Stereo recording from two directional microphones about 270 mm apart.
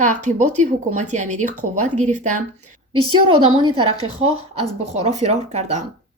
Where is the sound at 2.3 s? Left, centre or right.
Right.